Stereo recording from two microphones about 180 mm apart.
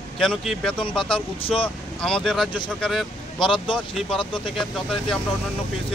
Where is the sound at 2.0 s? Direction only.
5° left (ahead or behind).